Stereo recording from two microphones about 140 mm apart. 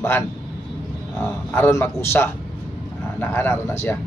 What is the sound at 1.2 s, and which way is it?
A man's voice, 15° left (ahead or behind).